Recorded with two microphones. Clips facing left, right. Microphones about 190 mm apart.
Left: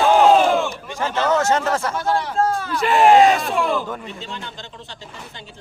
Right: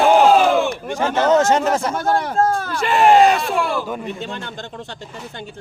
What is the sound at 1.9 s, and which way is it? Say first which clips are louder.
Speech: right 2 dB; 50° right (ahead or behind).